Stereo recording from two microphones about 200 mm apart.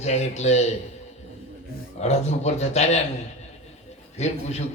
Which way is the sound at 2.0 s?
35° left (ahead or behind).